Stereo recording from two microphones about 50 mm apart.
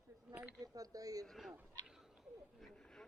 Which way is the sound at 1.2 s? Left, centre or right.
Centre.